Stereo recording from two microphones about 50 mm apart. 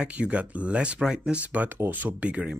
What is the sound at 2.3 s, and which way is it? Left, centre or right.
Speech, right.